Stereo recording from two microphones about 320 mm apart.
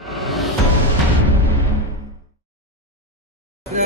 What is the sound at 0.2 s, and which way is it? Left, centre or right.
Music, centre.